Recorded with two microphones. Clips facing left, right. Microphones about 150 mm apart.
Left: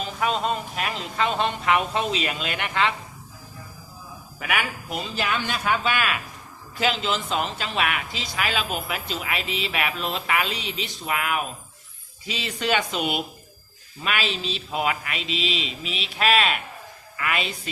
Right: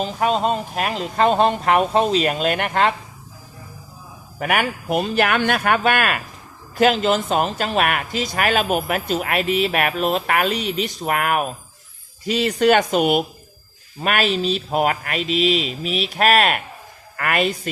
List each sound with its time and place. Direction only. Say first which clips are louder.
0.0 s speech: right 6 dB; 40° right (ahead or behind)
4.4 s speech: right 6 dB; 50° right (ahead or behind)